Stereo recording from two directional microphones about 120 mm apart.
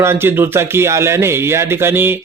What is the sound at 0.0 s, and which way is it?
Speech, 20° right (ahead or behind).